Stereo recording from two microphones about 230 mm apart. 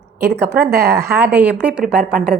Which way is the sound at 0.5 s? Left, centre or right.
Right.